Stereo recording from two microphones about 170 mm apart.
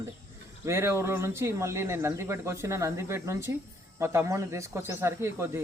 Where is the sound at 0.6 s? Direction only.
15° right (ahead or behind).